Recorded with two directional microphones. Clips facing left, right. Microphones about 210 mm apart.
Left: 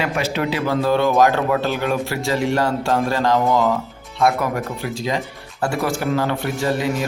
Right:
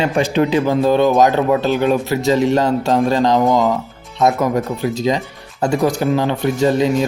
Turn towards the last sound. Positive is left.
turn(degrees=-20)  # may be behind; listen again after turning